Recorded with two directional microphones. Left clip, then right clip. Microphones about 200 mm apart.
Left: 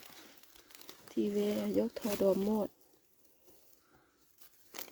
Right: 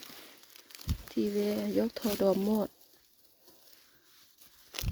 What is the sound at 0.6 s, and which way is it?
Speech, 30° right (ahead or behind).